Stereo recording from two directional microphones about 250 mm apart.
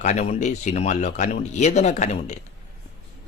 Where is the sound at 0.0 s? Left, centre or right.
Left.